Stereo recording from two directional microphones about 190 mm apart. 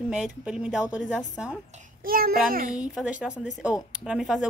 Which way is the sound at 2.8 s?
5° right (ahead or behind).